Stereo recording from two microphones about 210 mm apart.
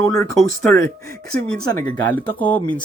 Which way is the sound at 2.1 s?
5° left (ahead or behind).